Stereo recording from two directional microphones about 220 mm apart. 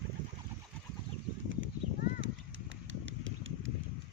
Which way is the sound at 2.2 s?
60° right (ahead or behind).